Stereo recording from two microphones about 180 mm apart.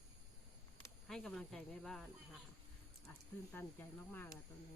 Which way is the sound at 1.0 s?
Centre (ahead or behind).